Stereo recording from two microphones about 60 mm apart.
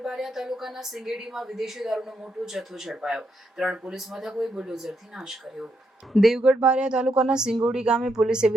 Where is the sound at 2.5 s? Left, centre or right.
Centre.